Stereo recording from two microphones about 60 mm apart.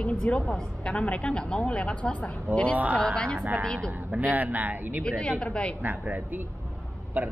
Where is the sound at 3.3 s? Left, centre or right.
Right.